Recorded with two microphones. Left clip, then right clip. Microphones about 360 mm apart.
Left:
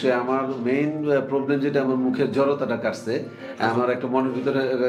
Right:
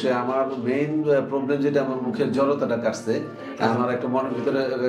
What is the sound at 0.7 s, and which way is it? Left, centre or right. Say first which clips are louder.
A man's voice: left 1 dB; left.